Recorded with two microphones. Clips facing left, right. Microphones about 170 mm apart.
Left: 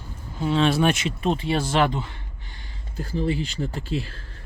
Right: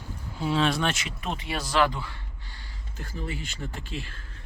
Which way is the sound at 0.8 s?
20° left (ahead or behind).